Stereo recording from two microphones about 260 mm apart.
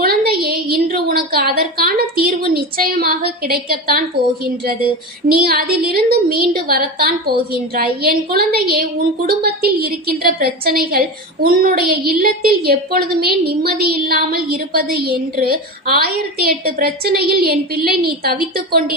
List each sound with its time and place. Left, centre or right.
0.0 s a woman's voice: right
5.3 s a woman's voice: right